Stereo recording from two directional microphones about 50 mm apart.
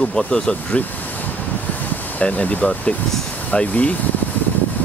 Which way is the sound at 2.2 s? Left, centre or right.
Left.